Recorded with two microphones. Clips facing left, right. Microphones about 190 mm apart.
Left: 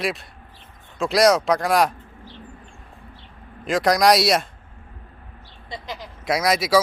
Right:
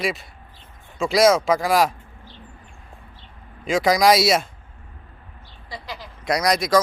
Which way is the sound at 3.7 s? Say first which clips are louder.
Even; centre (ahead or behind).